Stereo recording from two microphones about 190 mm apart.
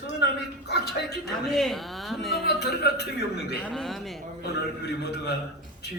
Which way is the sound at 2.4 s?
60° left (ahead or behind).